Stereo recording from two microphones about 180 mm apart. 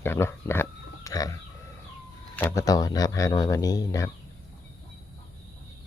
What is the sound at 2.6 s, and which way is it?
Speech, 20° left (ahead or behind).